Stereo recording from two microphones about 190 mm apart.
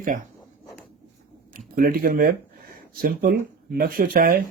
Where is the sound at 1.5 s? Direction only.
50° right (ahead or behind).